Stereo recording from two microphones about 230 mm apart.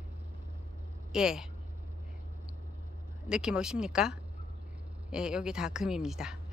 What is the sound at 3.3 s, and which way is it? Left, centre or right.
A woman's voice, centre.